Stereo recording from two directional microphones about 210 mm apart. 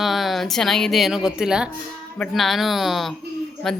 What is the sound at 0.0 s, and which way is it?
Speech, centre (ahead or behind).